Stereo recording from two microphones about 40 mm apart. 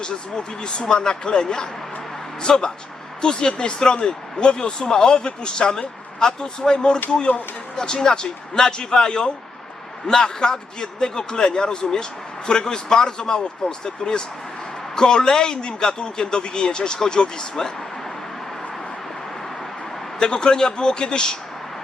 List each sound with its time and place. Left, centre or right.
0.0 s speech: left
20.1 s speech: centre